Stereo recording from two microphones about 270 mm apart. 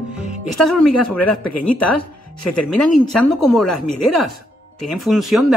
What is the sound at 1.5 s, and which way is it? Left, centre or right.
Speech, left.